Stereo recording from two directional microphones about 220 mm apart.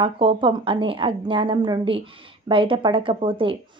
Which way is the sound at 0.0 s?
25° right (ahead or behind).